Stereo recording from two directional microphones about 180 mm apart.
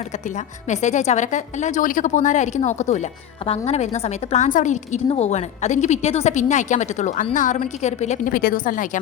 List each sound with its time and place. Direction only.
0.3 s a woman's voice: 40° left (ahead or behind)
8.3 s a woman's voice: 55° left (ahead or behind)